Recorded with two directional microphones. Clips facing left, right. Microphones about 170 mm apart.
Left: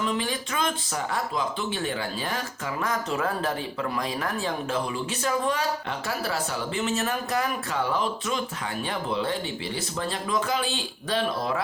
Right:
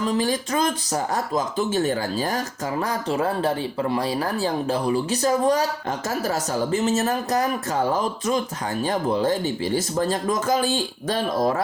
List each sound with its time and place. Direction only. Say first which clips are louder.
0.0 s speech: right 5 dB; 40° right (ahead or behind)